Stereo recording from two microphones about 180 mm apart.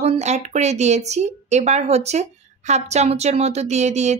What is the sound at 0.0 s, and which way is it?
Speech, 40° right (ahead or behind).